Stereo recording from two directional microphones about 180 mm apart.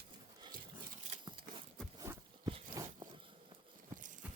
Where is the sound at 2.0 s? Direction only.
20° right (ahead or behind).